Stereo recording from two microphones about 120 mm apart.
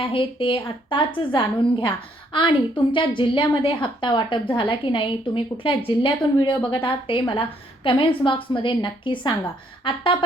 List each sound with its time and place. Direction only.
0.0 s a woman's voice: 50° left (ahead or behind)